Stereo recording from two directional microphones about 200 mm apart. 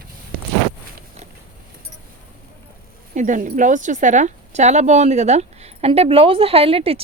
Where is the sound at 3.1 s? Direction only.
40° right (ahead or behind).